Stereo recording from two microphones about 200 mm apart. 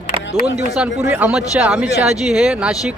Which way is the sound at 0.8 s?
10° right (ahead or behind).